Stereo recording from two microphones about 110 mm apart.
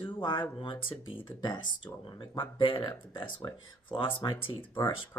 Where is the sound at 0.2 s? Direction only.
45° left (ahead or behind).